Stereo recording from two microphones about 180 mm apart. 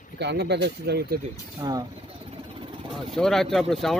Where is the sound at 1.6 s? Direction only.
20° right (ahead or behind).